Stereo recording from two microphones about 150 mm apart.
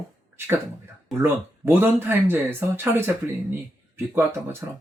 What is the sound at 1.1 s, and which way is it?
Speech, 15° right (ahead or behind).